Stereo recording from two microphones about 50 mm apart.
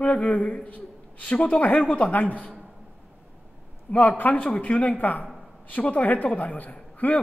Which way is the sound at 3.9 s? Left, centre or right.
Left.